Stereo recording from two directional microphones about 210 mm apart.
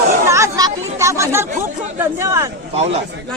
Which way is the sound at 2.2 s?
15° right (ahead or behind).